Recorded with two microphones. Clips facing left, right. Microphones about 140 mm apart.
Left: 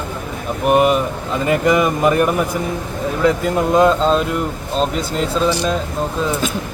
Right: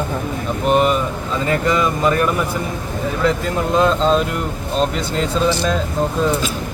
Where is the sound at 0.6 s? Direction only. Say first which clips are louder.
Left 2 dB; 10° left (ahead or behind).